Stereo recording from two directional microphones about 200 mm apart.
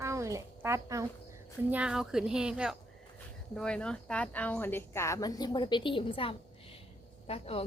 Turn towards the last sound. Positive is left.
turn(degrees=30)  # may be behind; listen again after turning